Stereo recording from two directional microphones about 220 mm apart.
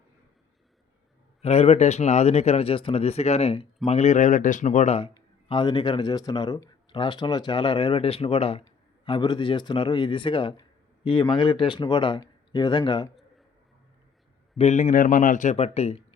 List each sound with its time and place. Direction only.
1.4 s a man's voice: 30° left (ahead or behind)
14.6 s speech: 30° left (ahead or behind)